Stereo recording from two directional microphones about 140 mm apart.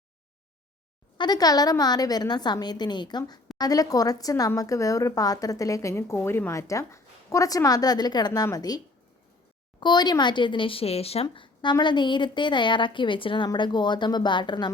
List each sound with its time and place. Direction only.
1.2 s a woman's voice: 30° left (ahead or behind)
9.8 s speech: 30° left (ahead or behind)